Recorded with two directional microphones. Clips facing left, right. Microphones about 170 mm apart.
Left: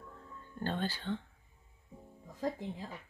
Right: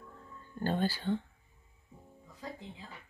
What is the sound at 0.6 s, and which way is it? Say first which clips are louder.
Speech: right 4 dB; 10° right (ahead or behind).